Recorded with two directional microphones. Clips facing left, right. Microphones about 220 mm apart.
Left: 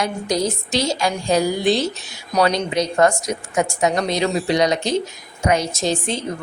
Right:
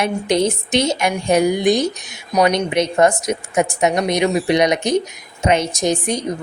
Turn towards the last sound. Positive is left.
turn(degrees=-15)  # may be behind; listen again after turning